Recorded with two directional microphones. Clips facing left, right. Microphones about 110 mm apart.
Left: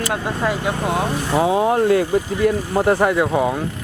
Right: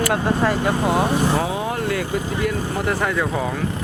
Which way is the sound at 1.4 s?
30° left (ahead or behind).